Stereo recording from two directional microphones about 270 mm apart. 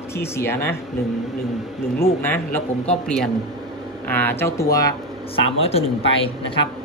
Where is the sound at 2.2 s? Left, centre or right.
Centre.